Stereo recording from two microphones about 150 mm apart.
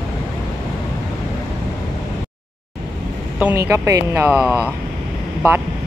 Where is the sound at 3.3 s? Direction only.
10° right (ahead or behind).